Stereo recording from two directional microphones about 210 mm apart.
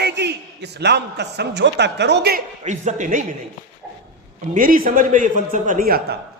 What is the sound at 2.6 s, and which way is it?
Speech, 35° right (ahead or behind).